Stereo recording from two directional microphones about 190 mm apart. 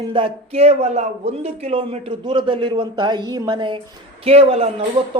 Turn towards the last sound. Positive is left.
turn(degrees=-30)  # may be behind; listen again after turning